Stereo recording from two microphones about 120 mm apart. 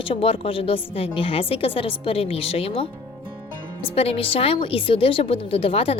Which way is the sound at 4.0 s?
55° left (ahead or behind).